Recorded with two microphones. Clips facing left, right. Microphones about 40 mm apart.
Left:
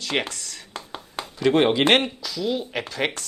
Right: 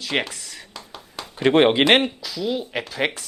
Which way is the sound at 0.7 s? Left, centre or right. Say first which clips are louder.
Left 5 dB; left.